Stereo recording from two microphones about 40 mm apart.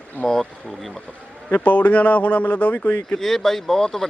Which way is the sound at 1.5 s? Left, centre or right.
Left.